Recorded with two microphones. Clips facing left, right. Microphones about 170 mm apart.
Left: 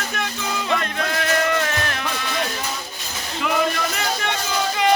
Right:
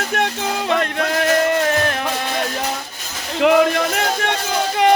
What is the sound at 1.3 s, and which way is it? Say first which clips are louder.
Music: right 5 dB; 40° right (ahead or behind).